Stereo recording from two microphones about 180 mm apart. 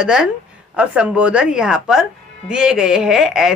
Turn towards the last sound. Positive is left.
turn(degrees=0)  # may be behind; listen again after turning